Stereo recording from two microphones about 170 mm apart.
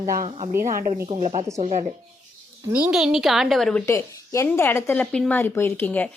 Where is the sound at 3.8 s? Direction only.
15° left (ahead or behind).